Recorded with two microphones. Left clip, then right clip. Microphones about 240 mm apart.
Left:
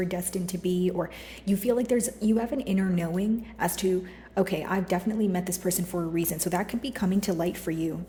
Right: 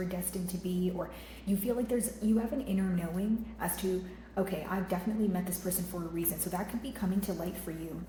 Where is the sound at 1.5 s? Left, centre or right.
Left.